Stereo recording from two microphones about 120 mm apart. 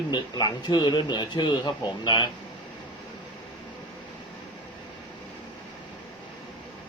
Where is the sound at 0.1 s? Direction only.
35° left (ahead or behind).